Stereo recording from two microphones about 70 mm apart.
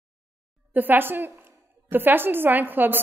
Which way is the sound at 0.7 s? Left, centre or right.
Right.